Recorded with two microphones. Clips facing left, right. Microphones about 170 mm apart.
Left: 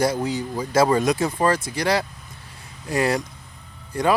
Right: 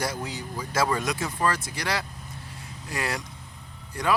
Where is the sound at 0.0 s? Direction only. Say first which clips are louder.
Left 9 dB; 35° left (ahead or behind).